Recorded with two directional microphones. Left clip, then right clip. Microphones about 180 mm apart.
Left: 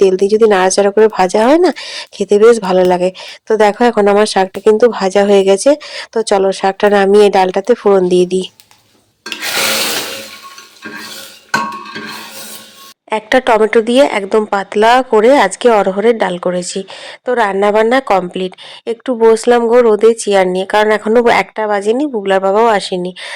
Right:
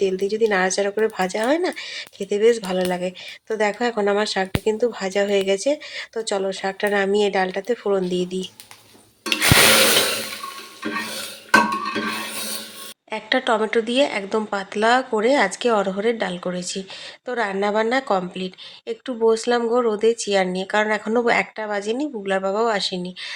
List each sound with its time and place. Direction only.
0.0 s speech: 45° left (ahead or behind)
13.1 s a woman's voice: 35° left (ahead or behind)